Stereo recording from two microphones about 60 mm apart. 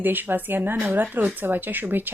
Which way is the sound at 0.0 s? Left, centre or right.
Right.